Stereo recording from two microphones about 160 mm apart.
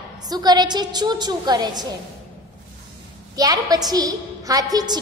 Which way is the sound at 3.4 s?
25° right (ahead or behind).